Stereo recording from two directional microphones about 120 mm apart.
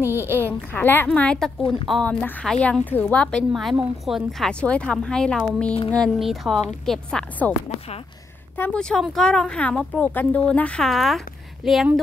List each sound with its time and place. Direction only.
0.0 s a child's voice: 20° right (ahead or behind)
0.5 s a woman's voice: 15° left (ahead or behind)
8.7 s a woman's voice: 5° left (ahead or behind)